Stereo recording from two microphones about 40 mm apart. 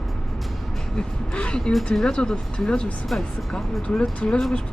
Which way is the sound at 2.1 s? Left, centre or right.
Left.